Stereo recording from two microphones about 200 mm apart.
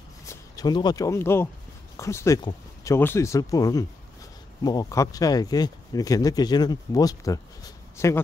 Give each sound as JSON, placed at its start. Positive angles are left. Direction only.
{"t": 0.3, "sound": "speech", "side_deg": 20}